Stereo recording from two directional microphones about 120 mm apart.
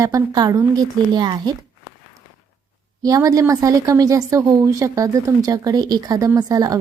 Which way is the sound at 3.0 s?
30° right (ahead or behind).